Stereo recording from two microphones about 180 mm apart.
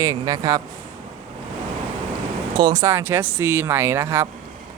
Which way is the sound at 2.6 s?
20° right (ahead or behind).